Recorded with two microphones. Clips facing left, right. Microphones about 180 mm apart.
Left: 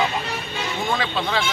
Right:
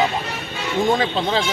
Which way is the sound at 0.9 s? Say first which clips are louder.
Right 5 dB; 40° right (ahead or behind).